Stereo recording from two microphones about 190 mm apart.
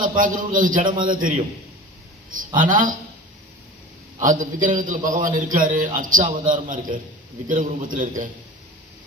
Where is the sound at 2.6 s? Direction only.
45° right (ahead or behind).